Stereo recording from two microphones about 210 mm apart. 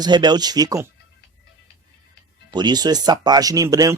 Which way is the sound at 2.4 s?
20° right (ahead or behind).